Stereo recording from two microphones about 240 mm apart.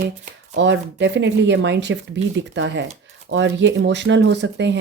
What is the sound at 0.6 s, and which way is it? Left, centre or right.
Speech, right.